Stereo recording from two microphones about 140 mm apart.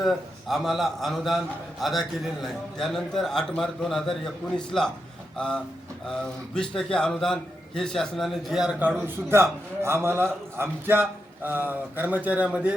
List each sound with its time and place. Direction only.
0.0 s a man's voice: centre (ahead or behind)
6.1 s a man's voice: 5° left (ahead or behind)